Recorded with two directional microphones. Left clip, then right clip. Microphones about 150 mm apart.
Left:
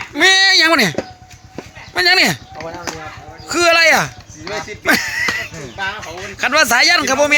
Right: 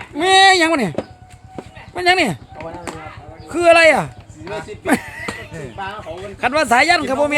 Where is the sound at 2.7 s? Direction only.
25° left (ahead or behind).